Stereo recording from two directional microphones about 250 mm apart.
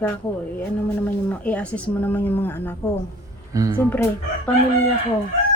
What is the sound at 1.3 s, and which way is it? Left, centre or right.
A woman's voice, centre.